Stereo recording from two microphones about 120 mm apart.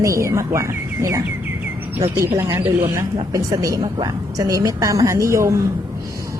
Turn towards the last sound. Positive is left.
turn(degrees=-25)  # may be behind; listen again after turning